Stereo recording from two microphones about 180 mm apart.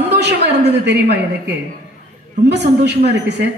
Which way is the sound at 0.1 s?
70° right (ahead or behind).